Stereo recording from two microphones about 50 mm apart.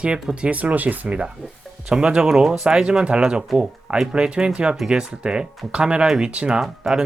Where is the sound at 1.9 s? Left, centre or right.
Centre.